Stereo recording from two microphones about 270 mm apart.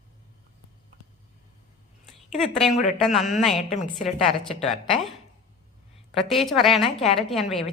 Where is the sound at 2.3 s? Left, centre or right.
Centre.